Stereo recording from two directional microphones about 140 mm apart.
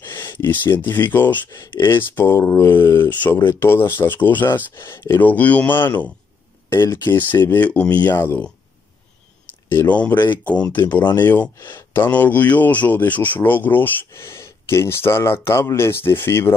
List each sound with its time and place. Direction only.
0.2 s speech: 15° left (ahead or behind)
9.7 s speech: 15° left (ahead or behind)